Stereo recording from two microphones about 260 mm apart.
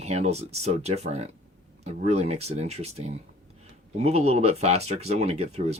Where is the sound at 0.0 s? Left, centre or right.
Right.